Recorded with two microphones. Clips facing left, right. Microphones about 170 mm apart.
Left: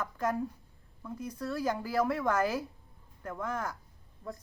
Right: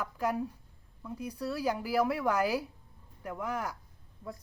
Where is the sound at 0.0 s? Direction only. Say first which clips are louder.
Even; 10° right (ahead or behind).